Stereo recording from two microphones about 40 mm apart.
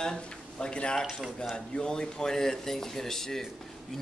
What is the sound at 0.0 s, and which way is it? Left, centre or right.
A man's voice, centre.